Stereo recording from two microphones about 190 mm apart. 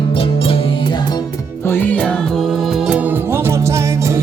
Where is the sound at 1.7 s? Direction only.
10° left (ahead or behind).